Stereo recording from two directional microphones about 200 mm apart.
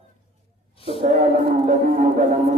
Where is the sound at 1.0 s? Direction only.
35° right (ahead or behind).